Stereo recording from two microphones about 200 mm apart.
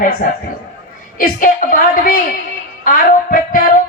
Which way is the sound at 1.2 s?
45° left (ahead or behind).